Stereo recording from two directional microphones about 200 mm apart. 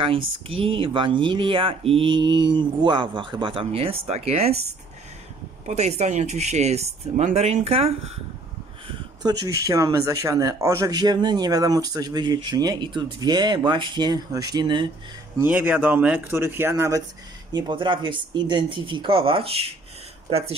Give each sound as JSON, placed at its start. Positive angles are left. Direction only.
{"t": 0.5, "sound": "speech", "side_deg": -25}
{"t": 5.7, "sound": "speech", "side_deg": -35}
{"t": 8.8, "sound": "speech", "side_deg": -20}
{"t": 15.4, "sound": "speech", "side_deg": -10}